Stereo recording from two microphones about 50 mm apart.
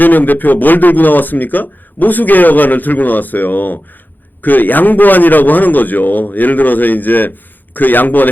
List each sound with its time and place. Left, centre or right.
0.0 s a man's voice: left